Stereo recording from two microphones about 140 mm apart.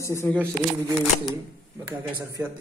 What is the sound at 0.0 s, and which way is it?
Speech, 20° left (ahead or behind).